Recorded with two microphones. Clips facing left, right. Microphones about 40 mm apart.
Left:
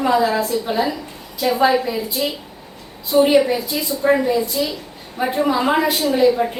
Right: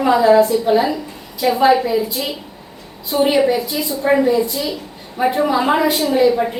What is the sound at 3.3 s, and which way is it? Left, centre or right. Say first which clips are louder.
A woman's voice: even; centre.